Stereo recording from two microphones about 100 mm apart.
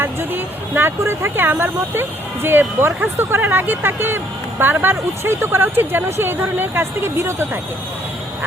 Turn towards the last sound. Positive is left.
turn(degrees=-25)  # may be behind; listen again after turning